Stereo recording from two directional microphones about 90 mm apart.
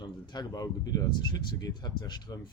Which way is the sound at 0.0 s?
45° left (ahead or behind).